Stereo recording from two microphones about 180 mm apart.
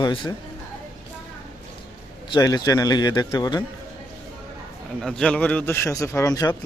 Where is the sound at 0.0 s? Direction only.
25° left (ahead or behind).